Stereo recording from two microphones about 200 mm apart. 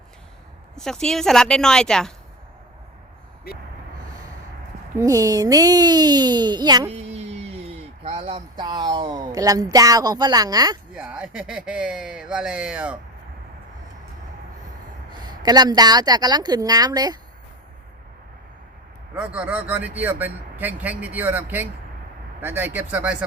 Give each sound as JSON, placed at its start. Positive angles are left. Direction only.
{"t": 0.8, "sound": "speech", "side_deg": 5}
{"t": 4.9, "sound": "a woman's voice", "side_deg": -15}
{"t": 6.9, "sound": "speech", "side_deg": -30}
{"t": 10.9, "sound": "speech", "side_deg": -5}
{"t": 15.2, "sound": "a woman's voice", "side_deg": -20}
{"t": 19.1, "sound": "a man's voice", "side_deg": -5}